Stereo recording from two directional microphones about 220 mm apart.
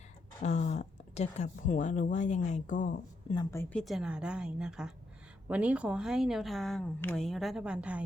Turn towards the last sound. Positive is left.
turn(degrees=-5)  # may be behind; listen again after turning